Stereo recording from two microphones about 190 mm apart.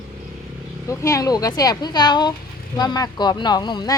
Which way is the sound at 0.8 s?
15° left (ahead or behind).